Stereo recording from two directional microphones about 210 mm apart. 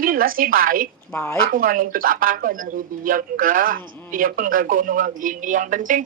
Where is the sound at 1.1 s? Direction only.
10° left (ahead or behind).